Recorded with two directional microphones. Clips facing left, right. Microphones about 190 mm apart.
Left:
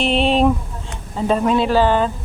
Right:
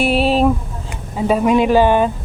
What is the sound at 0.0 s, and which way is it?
Speech, 5° right (ahead or behind).